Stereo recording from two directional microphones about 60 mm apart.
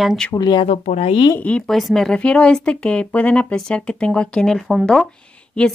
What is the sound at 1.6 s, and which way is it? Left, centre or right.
A woman's voice, centre.